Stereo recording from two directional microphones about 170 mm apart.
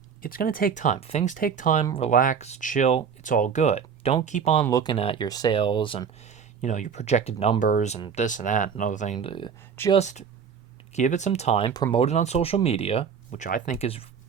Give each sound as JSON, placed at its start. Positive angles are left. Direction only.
{"t": 0.2, "sound": "speech", "side_deg": 60}
{"t": 4.6, "sound": "speech", "side_deg": 20}
{"t": 6.6, "sound": "speech", "side_deg": 45}
{"t": 7.6, "sound": "speech", "side_deg": 50}
{"t": 9.1, "sound": "speech", "side_deg": 30}
{"t": 9.9, "sound": "speech", "side_deg": 40}
{"t": 11.7, "sound": "speech", "side_deg": 20}
{"t": 11.9, "sound": "speech", "side_deg": 40}
{"t": 13.3, "sound": "speech", "side_deg": 50}